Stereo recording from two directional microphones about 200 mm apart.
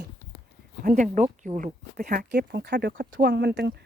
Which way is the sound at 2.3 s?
55° right (ahead or behind).